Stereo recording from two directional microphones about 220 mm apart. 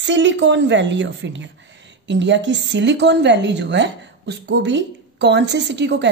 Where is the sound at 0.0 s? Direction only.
55° right (ahead or behind).